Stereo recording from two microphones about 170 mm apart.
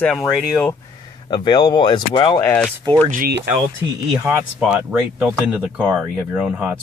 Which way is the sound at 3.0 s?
50° right (ahead or behind).